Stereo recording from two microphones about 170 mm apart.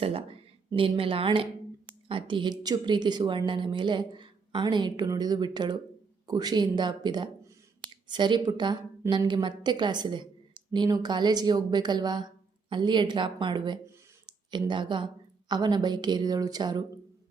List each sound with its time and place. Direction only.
0.0 s a woman's voice: 35° right (ahead or behind)